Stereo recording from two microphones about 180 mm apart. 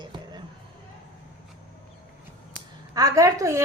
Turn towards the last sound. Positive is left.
turn(degrees=-15)  # may be behind; listen again after turning